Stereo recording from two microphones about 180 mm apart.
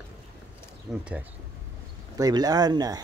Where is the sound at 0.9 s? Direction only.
Centre (ahead or behind).